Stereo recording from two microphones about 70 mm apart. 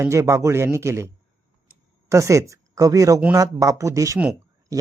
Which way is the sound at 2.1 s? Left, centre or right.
Right.